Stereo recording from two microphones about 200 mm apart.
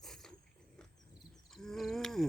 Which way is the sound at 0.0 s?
Centre (ahead or behind).